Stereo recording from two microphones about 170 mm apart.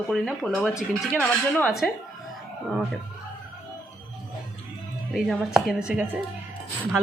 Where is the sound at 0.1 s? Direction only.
5° left (ahead or behind).